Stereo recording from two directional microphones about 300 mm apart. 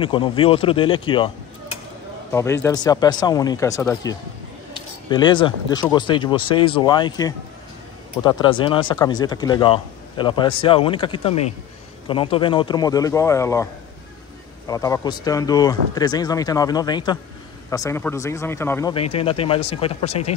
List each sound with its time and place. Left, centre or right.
0.0 s speech: centre
2.3 s speech: centre
14.7 s speech: centre